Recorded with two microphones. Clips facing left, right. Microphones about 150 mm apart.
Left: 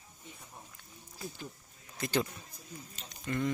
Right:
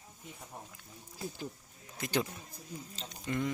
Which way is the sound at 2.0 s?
15° right (ahead or behind).